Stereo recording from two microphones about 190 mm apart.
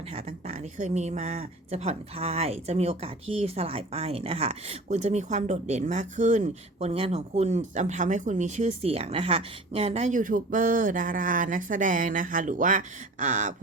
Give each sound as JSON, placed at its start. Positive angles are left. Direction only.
{"t": 0.1, "sound": "speech", "side_deg": -35}